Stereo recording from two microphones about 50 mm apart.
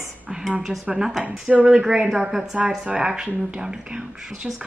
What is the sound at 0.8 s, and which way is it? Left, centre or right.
Speech, centre.